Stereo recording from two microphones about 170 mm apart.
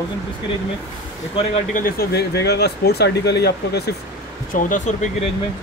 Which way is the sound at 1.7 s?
60° left (ahead or behind).